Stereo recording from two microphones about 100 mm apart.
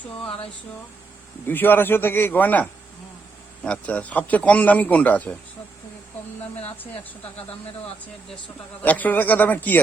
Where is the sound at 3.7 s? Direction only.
15° left (ahead or behind).